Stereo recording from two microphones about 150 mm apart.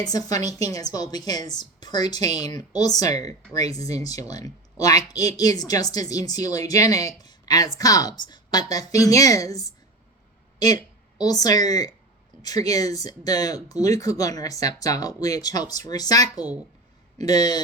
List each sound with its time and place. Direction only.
0.0 s speech: 25° left (ahead or behind)
7.2 s a sound: 25° left (ahead or behind)
7.8 s speech: 25° left (ahead or behind)